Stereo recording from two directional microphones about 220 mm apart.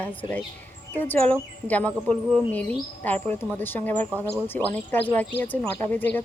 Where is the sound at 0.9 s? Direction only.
10° left (ahead or behind).